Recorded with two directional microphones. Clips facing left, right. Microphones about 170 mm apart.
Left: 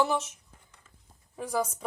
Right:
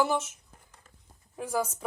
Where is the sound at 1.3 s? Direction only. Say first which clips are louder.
Even; 5° right (ahead or behind).